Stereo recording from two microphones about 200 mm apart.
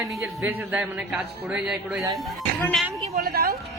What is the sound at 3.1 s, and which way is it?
Speech, 50° right (ahead or behind).